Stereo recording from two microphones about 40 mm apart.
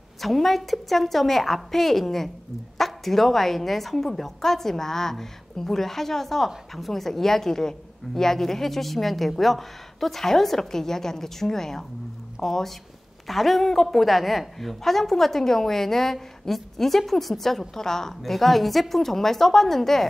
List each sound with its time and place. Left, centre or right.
0.2 s a woman's voice: centre